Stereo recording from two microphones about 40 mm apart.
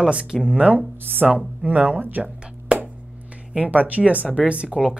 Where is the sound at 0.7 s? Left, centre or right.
Right.